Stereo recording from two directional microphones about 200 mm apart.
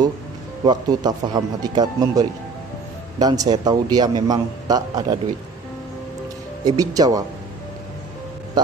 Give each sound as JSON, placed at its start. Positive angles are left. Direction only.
{"t": 0.7, "sound": "a man's voice", "side_deg": -20}
{"t": 6.6, "sound": "speech", "side_deg": -20}